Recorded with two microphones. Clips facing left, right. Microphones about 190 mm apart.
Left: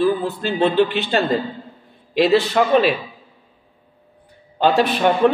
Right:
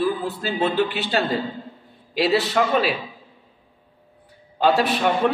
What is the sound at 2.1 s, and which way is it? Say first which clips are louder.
Speech: left 4 dB; centre (ahead or behind).